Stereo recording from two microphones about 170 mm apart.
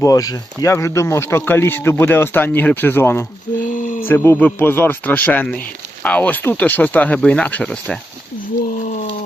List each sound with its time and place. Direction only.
0.0 s speech: 20° left (ahead or behind)
3.6 s a sound: 50° left (ahead or behind)
4.0 s speech: 15° left (ahead or behind)